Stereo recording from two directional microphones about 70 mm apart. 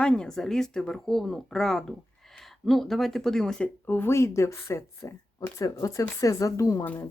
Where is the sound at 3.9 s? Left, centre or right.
Left.